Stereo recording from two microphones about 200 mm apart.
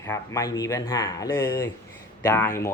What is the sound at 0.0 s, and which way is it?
Speech, 15° left (ahead or behind).